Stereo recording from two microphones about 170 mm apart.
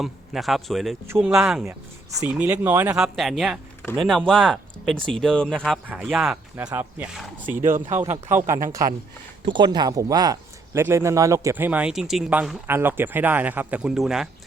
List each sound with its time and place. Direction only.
0.0 s speech: centre (ahead or behind)
1.0 s speech: 15° right (ahead or behind)
1.3 s speech: 5° right (ahead or behind)
9.5 s speech: 25° right (ahead or behind); by 14.3 s centre (ahead or behind)